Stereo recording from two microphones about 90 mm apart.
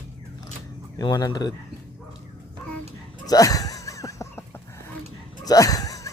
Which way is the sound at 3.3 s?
40° left (ahead or behind).